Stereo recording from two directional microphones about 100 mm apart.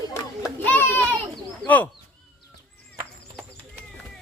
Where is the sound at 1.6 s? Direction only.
15° left (ahead or behind).